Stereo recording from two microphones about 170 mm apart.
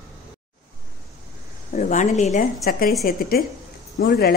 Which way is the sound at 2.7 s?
60° left (ahead or behind).